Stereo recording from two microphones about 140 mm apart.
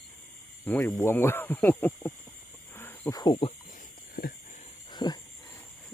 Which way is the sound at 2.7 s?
15° left (ahead or behind).